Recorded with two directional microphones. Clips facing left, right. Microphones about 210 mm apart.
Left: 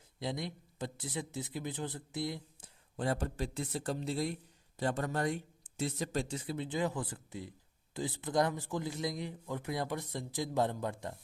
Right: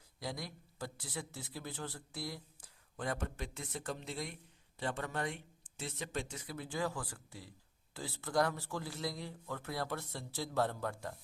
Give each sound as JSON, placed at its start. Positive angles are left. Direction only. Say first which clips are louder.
{"t": 0.2, "sound": "speech", "louder": "left 5 dB", "side_deg": 20}